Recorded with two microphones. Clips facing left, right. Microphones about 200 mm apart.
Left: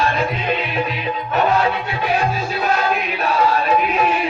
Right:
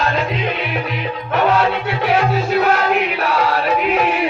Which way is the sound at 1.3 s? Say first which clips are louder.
Right 2 dB; 70° right (ahead or behind).